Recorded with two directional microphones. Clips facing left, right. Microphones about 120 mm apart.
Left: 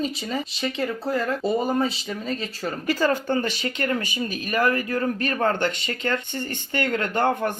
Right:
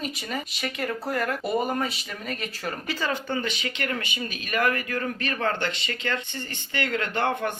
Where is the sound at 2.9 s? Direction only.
45° left (ahead or behind).